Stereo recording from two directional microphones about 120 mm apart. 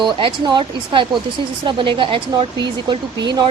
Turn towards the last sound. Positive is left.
turn(degrees=-35)  # may be behind; listen again after turning